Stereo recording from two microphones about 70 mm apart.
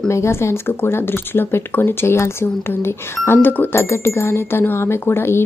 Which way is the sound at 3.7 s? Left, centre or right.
Left.